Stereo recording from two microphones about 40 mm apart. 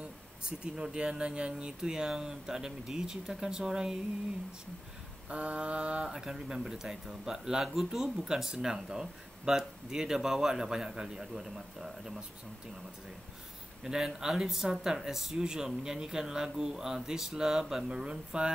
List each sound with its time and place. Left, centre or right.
0.4 s mantra: right
0.9 s speech: right
5.3 s mantra: right
6.0 s speech: centre
8.3 s speech: centre
13.8 s speech: centre
18.0 s mantra: right